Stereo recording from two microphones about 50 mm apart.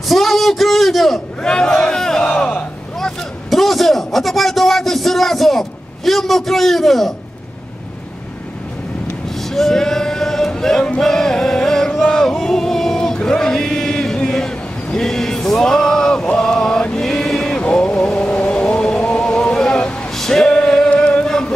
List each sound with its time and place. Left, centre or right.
0.1 s a sound: centre
1.4 s crowd: centre
3.0 s a sound: centre
9.5 s male singing: centre
11.0 s music: centre
17.0 s vehicle: centre
18.9 s male singing: left
20.9 s chant: left